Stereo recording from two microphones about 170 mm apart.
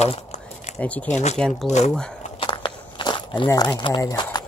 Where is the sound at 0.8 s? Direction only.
10° left (ahead or behind).